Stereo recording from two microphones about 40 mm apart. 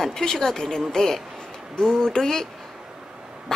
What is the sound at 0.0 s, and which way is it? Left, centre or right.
Speech, centre.